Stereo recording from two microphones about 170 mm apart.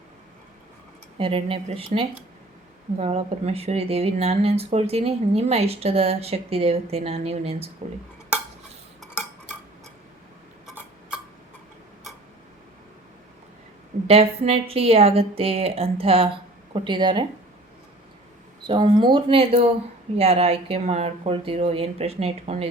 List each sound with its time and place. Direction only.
1.2 s speech: 35° right (ahead or behind)
14.1 s speech: 35° right (ahead or behind)
18.7 s speech: 30° right (ahead or behind)